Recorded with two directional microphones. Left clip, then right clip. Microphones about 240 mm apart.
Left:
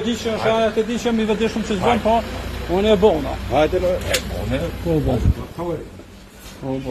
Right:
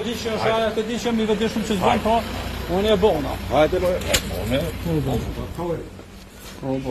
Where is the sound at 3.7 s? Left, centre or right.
Centre.